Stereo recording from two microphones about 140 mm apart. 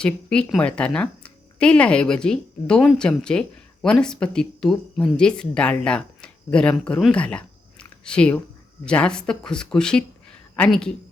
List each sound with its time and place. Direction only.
0.0 s speech: 5° left (ahead or behind)